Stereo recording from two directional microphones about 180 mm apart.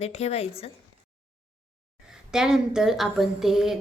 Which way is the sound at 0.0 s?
35° left (ahead or behind).